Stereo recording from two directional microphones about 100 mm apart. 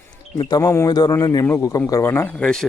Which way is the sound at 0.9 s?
45° left (ahead or behind).